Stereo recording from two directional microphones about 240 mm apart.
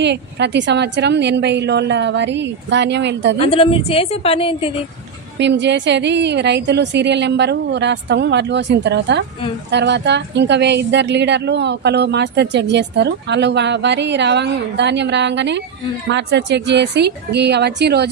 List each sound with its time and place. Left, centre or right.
0.0 s a woman's voice: right
3.3 s a woman's voice: left
5.4 s a woman's voice: right